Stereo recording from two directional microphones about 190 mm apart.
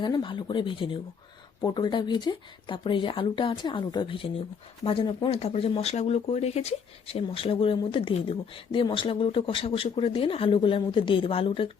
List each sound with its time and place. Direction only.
0.0 s speech: 25° left (ahead or behind)